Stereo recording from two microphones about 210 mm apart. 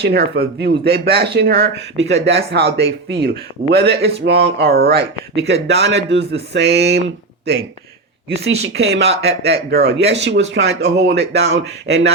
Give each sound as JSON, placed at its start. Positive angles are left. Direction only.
{"t": 0.0, "sound": "speech", "side_deg": -50}
{"t": 8.4, "sound": "speech", "side_deg": -60}